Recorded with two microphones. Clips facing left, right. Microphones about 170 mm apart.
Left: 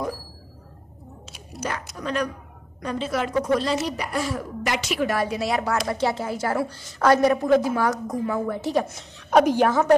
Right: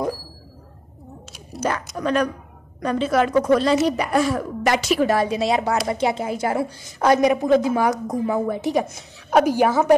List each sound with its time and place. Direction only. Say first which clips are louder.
2.0 s a woman's voice: right 7 dB; 90° right
2.8 s speech: right 6 dB; 65° right (ahead or behind)
4.6 s a woman's voice: right 6 dB; 40° right (ahead or behind); by 8.8 s 15° right (ahead or behind)
9.3 s a woman's voice: right 1 dB; 5° right (ahead or behind)